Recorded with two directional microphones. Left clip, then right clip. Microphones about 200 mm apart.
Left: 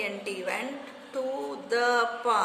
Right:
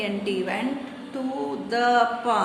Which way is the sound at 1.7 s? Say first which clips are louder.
Right 4 dB; 30° left (ahead or behind).